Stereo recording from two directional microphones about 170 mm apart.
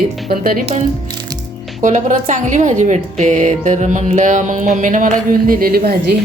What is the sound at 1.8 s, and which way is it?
Speech, 45° right (ahead or behind).